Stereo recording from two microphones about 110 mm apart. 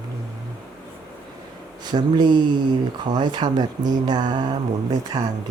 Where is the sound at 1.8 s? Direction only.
40° right (ahead or behind).